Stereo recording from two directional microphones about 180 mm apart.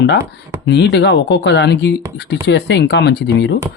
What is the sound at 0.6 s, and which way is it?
Speech, 70° left (ahead or behind).